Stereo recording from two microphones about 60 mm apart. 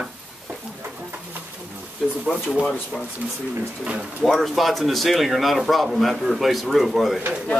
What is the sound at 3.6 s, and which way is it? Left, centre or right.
Speech, centre.